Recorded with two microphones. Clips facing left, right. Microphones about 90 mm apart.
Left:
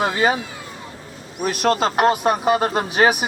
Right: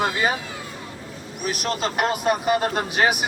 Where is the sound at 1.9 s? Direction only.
35° left (ahead or behind).